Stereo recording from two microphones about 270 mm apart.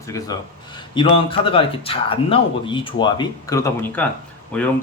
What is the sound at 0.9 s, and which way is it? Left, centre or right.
A man's voice, centre.